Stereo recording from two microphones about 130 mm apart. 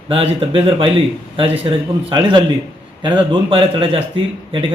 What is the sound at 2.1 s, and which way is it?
A man's voice, 35° right (ahead or behind).